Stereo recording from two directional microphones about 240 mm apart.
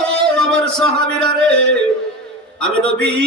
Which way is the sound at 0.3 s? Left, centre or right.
Centre.